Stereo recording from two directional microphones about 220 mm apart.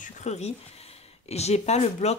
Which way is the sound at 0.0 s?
30° left (ahead or behind).